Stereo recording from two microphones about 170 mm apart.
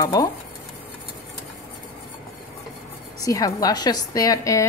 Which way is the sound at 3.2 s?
20° left (ahead or behind).